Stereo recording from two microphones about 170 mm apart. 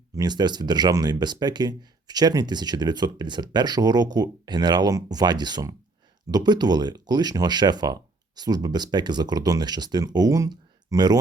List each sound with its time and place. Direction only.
0.2 s speech: 25° right (ahead or behind)